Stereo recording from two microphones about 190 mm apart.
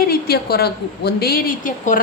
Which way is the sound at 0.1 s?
55° left (ahead or behind).